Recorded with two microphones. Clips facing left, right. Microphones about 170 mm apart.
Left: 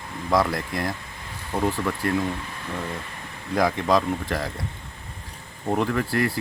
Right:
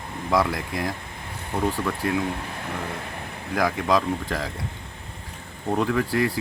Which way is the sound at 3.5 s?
5° right (ahead or behind).